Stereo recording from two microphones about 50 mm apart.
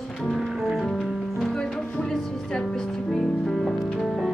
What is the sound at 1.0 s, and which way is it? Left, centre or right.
Music, centre.